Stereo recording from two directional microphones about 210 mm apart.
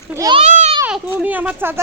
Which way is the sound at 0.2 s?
20° right (ahead or behind).